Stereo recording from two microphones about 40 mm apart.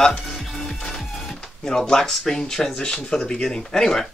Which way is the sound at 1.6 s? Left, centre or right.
Centre.